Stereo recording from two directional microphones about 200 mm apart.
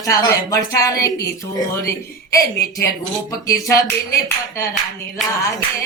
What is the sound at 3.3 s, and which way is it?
Speech, 15° left (ahead or behind).